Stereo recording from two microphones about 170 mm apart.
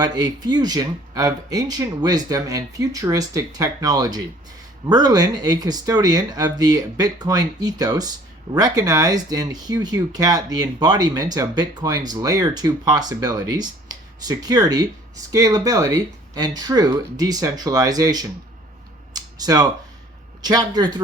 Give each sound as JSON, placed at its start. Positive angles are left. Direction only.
{"t": 0.0, "sound": "speech", "side_deg": -25}
{"t": 19.1, "sound": "a sound", "side_deg": -25}
{"t": 20.4, "sound": "speech", "side_deg": -25}